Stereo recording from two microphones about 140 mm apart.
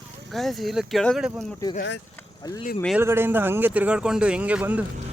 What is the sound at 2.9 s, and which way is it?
Speech, 15° right (ahead or behind).